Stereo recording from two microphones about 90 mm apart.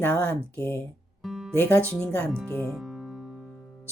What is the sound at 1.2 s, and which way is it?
Music, 5° right (ahead or behind).